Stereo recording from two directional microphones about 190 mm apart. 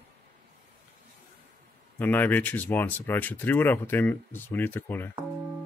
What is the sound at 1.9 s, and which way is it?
Speech, 10° left (ahead or behind).